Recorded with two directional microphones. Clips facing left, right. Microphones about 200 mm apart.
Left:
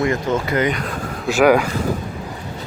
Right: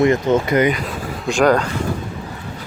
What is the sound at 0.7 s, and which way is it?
Speech, centre (ahead or behind).